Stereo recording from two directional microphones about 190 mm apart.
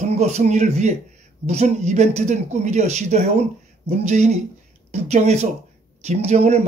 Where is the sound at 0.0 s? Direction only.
35° right (ahead or behind).